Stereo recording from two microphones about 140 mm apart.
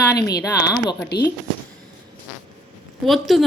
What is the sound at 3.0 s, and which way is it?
Speech, centre (ahead or behind).